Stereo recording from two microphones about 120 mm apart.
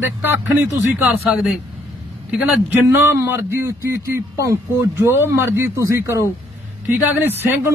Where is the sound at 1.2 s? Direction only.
5° right (ahead or behind).